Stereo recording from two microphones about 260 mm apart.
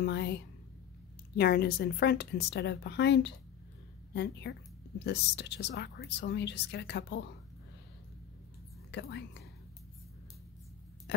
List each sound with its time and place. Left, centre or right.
0.0 s speech: left
8.9 s speech: left